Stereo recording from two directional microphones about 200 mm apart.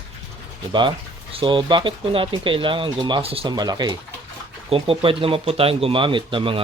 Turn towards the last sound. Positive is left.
turn(degrees=-25)  # may be behind; listen again after turning